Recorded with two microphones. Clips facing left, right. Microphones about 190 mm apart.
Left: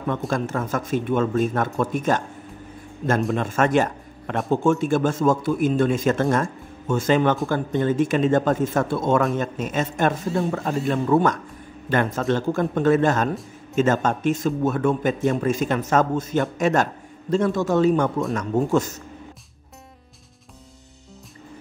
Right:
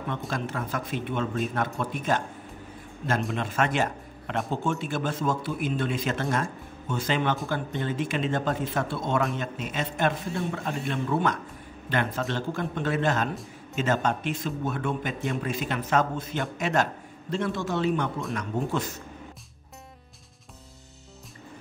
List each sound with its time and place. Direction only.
0.3 s a man's voice: 45° left (ahead or behind)
3.3 s a man's voice: 45° left (ahead or behind)